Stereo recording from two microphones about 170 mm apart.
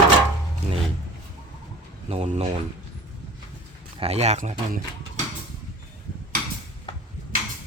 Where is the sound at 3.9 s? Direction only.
35° right (ahead or behind).